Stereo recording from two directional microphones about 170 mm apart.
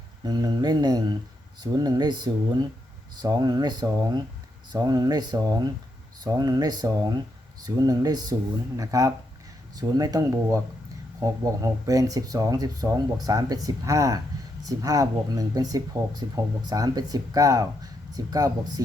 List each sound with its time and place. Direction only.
0.3 s speech: 25° right (ahead or behind)